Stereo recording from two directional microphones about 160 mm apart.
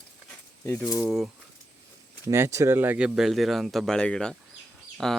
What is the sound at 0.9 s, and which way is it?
Speech, centre (ahead or behind).